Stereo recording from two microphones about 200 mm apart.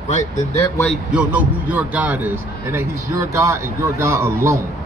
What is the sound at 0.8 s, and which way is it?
A man's voice, 5° right (ahead or behind).